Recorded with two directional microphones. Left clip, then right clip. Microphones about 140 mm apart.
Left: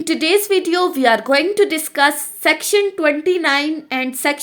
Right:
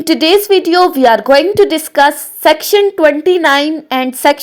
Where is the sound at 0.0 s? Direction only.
40° right (ahead or behind).